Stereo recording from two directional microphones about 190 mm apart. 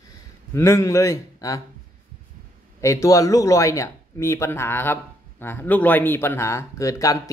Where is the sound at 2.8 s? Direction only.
15° left (ahead or behind).